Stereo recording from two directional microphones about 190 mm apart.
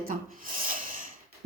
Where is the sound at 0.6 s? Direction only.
45° right (ahead or behind).